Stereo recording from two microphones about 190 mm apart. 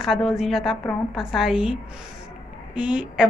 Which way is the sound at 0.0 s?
Centre (ahead or behind).